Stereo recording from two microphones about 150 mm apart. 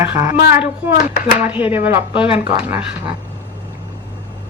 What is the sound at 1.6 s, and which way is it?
Speech, 15° right (ahead or behind).